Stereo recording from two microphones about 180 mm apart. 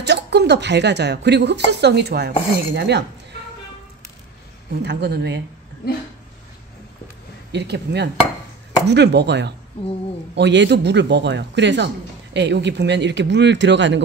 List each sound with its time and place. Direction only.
0.0 s a woman's voice: 70° right (ahead or behind)
4.8 s speech: 70° right (ahead or behind)
7.5 s speech: 70° right (ahead or behind); by 14.0 s 85° right